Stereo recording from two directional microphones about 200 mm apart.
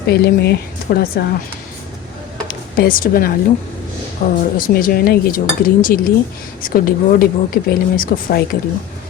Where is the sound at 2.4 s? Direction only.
45° left (ahead or behind).